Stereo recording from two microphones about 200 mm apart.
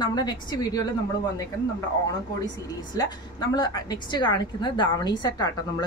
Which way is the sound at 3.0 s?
20° left (ahead or behind).